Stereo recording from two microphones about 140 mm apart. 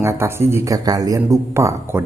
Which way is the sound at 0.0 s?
20° right (ahead or behind).